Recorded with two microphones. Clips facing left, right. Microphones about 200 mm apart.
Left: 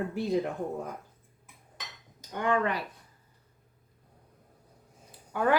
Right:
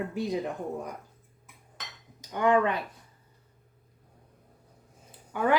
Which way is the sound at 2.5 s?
20° right (ahead or behind).